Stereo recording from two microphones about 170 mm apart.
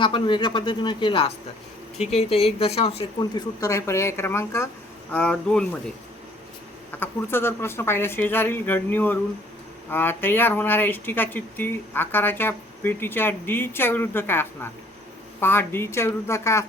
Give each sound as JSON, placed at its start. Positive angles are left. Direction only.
{"t": 0.0, "sound": "speech", "side_deg": 30}
{"t": 7.0, "sound": "speech", "side_deg": 15}